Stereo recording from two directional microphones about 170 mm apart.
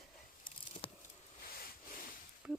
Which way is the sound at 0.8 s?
30° left (ahead or behind).